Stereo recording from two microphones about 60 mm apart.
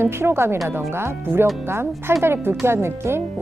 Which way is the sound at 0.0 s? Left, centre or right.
Right.